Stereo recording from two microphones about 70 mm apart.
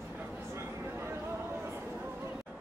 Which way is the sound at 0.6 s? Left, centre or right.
Right.